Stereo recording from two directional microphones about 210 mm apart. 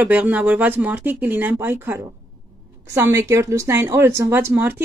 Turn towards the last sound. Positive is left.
turn(degrees=-10)  # may be behind; listen again after turning